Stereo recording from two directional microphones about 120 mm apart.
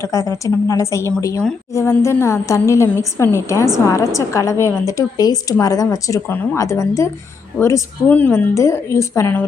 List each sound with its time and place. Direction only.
0.0 s a woman's voice: 25° left (ahead or behind)
8.1 s a woman's voice: 15° left (ahead or behind)